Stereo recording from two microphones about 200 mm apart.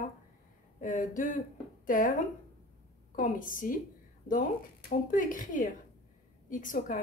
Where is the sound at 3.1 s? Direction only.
40° left (ahead or behind).